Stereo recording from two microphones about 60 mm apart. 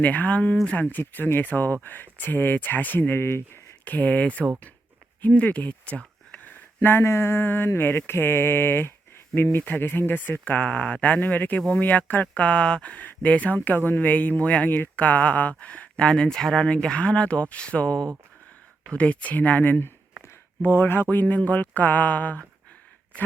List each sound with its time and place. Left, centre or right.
0.0 s speech: left
3.8 s speech: left
6.8 s speech: left